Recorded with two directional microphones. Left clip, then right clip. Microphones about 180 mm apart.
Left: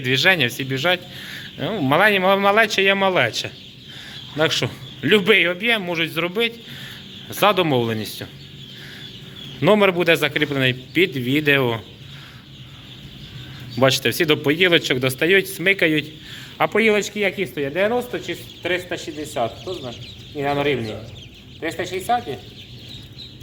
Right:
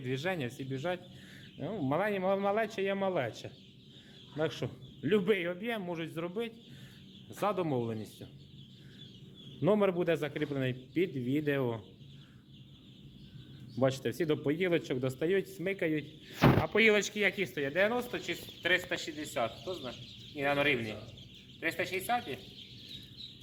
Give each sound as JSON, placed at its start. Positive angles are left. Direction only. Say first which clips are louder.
{"t": 0.0, "sound": "a man's voice", "louder": "left 19 dB", "side_deg": -10}
{"t": 9.6, "sound": "a man's voice", "louder": "left 13 dB", "side_deg": -15}
{"t": 13.7, "sound": "a man's voice", "louder": "left 14 dB", "side_deg": -20}